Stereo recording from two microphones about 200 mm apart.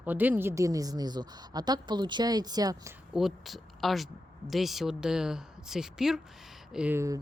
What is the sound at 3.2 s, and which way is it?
A woman's voice, centre (ahead or behind).